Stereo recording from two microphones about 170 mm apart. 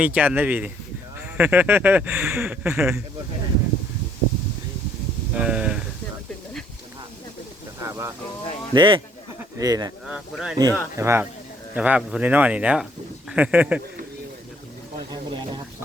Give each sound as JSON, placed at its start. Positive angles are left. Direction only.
{"t": 0.0, "sound": "speech", "side_deg": -10}
{"t": 5.4, "sound": "speech", "side_deg": -5}
{"t": 7.8, "sound": "a sound", "side_deg": -15}
{"t": 8.7, "sound": "speech", "side_deg": -30}
{"t": 10.1, "sound": "speech", "side_deg": 0}
{"t": 10.6, "sound": "speech", "side_deg": -20}
{"t": 15.1, "sound": "speech", "side_deg": -25}